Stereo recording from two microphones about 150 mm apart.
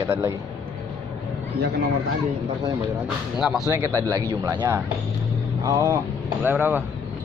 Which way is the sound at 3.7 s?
20° right (ahead or behind).